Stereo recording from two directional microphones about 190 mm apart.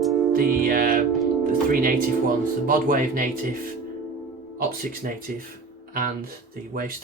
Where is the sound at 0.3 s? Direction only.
50° right (ahead or behind).